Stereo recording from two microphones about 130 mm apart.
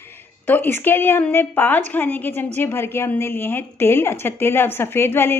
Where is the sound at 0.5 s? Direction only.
15° left (ahead or behind).